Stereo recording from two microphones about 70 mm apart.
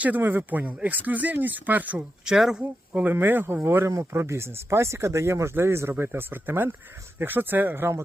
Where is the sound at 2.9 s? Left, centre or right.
Right.